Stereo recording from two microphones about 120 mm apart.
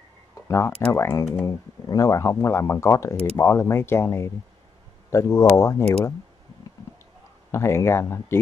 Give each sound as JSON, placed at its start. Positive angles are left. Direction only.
{"t": 0.5, "sound": "speech", "side_deg": 20}
{"t": 7.5, "sound": "speech", "side_deg": 20}